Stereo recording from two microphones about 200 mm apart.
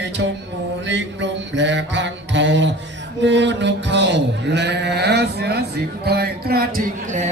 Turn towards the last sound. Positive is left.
turn(degrees=-40)  # may be behind; listen again after turning